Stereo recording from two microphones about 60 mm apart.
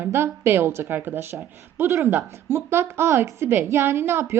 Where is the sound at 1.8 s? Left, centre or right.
Right.